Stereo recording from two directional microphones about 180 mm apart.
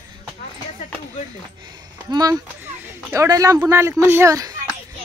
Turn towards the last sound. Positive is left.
turn(degrees=-20)  # may be behind; listen again after turning